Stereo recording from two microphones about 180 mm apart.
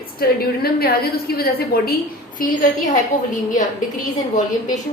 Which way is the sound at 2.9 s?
45° left (ahead or behind).